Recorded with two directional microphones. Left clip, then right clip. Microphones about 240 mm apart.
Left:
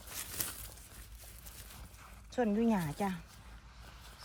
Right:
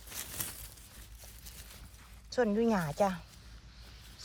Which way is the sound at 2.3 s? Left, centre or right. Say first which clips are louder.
Right 3 dB; centre.